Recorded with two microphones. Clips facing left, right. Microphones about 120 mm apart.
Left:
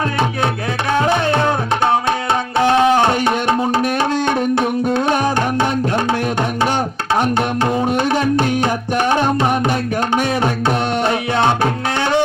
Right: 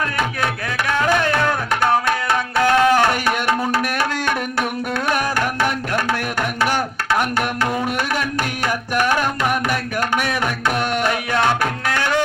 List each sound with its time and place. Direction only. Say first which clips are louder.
0.9 s tabla: left 3 dB; 25° left (ahead or behind)
2.6 s music: left 2 dB; 25° left (ahead or behind)